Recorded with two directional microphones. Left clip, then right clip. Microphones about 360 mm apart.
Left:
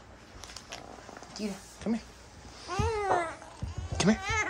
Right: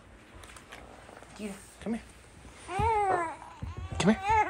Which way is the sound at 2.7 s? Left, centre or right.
Centre.